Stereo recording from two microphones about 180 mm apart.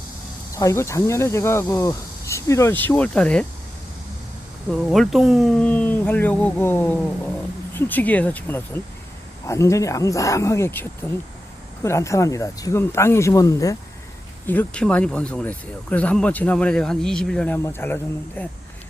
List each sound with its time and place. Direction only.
0.5 s speech: 15° left (ahead or behind)
4.7 s speech: centre (ahead or behind)